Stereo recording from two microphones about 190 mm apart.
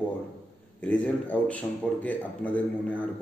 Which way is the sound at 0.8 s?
10° left (ahead or behind).